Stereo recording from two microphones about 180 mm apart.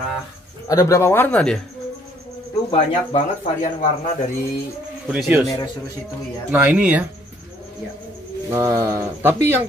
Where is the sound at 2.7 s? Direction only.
40° left (ahead or behind).